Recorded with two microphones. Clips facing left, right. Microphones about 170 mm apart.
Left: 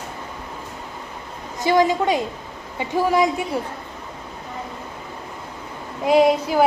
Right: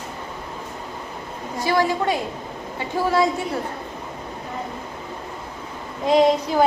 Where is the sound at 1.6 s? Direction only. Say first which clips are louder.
Left 3 dB; 20° left (ahead or behind).